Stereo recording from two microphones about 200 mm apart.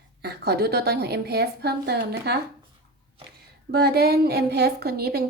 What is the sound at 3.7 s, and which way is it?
A woman's voice, 55° right (ahead or behind).